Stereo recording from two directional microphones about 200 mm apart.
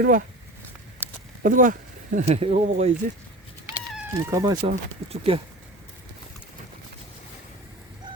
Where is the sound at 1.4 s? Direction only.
40° right (ahead or behind).